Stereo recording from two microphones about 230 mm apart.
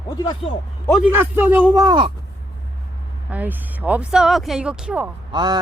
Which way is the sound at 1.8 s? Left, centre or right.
Centre.